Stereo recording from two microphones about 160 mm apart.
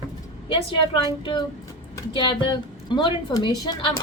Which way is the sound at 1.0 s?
30° left (ahead or behind).